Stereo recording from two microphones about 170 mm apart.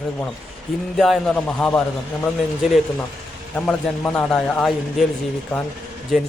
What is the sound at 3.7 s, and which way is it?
Speech, 5° left (ahead or behind).